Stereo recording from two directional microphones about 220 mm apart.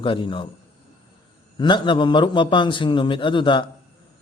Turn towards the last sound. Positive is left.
turn(degrees=20)  # may be behind; listen again after turning